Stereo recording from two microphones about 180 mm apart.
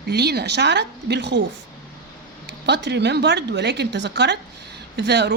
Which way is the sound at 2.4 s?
70° right (ahead or behind).